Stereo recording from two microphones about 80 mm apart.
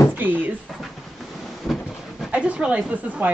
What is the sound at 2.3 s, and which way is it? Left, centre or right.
Speech, centre.